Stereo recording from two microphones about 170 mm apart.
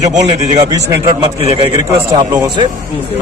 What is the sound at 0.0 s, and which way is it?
Speech, 45° right (ahead or behind).